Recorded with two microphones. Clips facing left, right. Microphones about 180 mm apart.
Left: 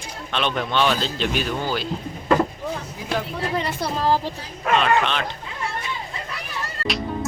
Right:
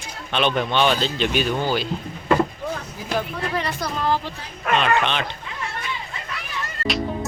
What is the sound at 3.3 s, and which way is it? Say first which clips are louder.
Speech: left 1 dB; 25° left (ahead or behind).